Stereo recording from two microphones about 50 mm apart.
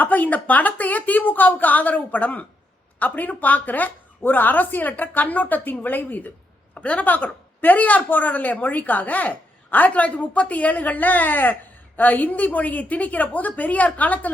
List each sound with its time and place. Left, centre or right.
0.0 s speech: left